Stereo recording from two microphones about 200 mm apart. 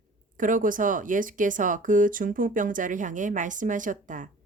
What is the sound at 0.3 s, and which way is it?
Speech, 40° right (ahead or behind).